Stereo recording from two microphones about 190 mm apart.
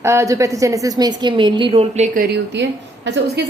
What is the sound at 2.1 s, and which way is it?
A woman's voice, 60° right (ahead or behind).